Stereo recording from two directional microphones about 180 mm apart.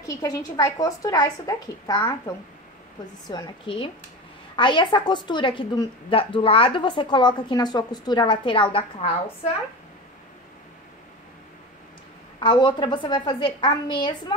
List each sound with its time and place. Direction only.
0.0 s a woman's voice: 20° left (ahead or behind)
12.4 s a woman's voice: 25° left (ahead or behind)